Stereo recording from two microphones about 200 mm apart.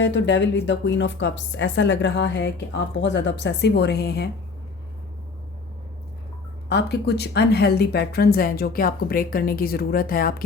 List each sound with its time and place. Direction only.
0.0 s a woman's voice: 65° left (ahead or behind)
6.7 s speech: 55° left (ahead or behind)